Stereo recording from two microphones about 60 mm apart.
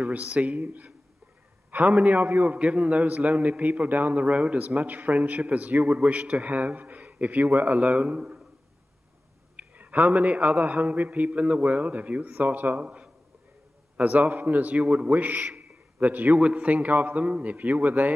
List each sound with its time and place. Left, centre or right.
0.1 s a man's voice: right
2.5 s a man's voice: centre; by 7.8 s right
7.8 s a man's voice: centre
9.6 s a sound: right
10.6 s a man's voice: right
14.8 s a man's voice: centre
16.3 s a man's voice: centre
16.6 s a man's voice: right